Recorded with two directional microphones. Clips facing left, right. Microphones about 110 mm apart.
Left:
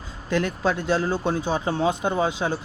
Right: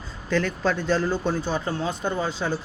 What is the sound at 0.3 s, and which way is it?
Speech, 15° left (ahead or behind).